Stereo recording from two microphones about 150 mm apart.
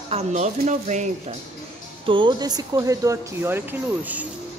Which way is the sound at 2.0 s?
35° right (ahead or behind).